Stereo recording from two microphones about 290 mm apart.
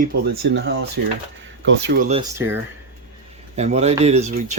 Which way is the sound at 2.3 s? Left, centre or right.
Centre.